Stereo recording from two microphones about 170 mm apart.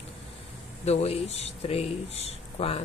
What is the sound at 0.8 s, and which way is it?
Speech, 35° left (ahead or behind).